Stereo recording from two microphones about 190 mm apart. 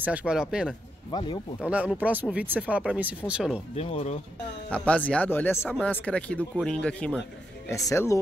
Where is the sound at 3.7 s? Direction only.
35° left (ahead or behind).